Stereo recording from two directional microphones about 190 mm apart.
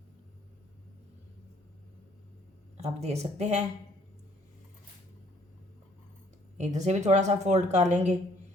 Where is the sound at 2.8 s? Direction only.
35° right (ahead or behind).